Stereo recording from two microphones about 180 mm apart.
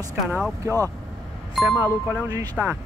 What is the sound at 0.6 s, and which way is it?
Speech, 15° right (ahead or behind).